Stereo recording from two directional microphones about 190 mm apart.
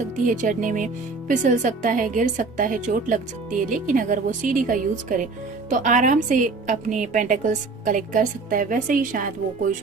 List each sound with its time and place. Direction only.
0.3 s a woman's voice: 45° right (ahead or behind)